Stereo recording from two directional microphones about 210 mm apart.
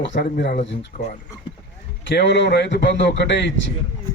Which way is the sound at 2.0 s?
60° left (ahead or behind).